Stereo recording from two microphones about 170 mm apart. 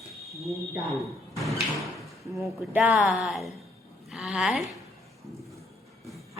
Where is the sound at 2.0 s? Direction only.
Centre (ahead or behind).